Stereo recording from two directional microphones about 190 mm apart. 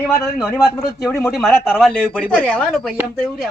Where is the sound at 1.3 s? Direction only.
5° left (ahead or behind).